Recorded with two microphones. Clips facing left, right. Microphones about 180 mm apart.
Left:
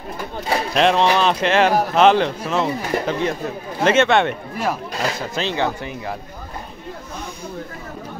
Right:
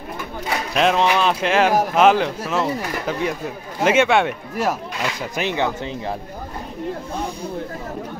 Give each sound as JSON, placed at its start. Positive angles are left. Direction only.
{"t": 0.7, "sound": "speech", "side_deg": -5}